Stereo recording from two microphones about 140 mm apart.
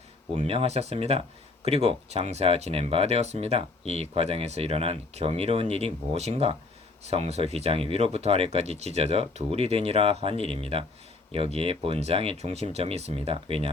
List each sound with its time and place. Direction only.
0.3 s speech: 45° right (ahead or behind)